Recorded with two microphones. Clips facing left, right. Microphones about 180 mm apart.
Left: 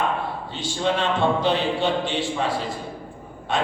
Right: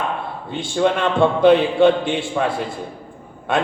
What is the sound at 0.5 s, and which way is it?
Speech, 55° right (ahead or behind).